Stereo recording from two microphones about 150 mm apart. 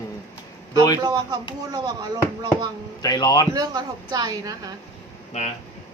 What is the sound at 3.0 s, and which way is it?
Speech, 25° left (ahead or behind).